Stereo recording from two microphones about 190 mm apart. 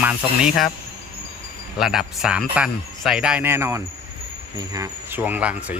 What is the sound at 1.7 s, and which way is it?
Speech, centre (ahead or behind).